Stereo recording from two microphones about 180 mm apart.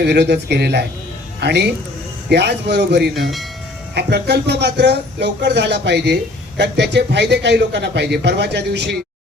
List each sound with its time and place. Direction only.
0.0 s speech: 65° right (ahead or behind)